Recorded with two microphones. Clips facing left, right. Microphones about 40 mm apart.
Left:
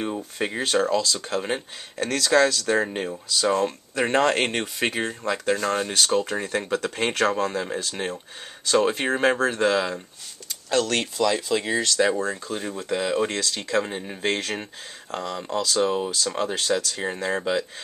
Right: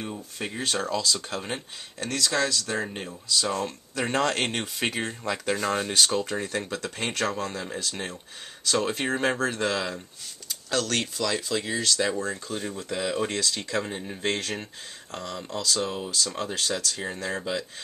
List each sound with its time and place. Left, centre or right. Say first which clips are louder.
0.0 s speech: left 6 dB; left
0.7 s speech: left 7 dB; centre
0.9 s speech: left 4 dB; centre
2.0 s speech: left 7 dB; left
2.7 s speech: left 7 dB; left; by 6.2 s centre
6.2 s speech: left 3 dB; centre
6.8 s speech: left 6 dB; left